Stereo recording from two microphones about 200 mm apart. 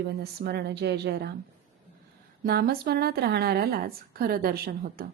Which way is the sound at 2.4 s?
50° right (ahead or behind).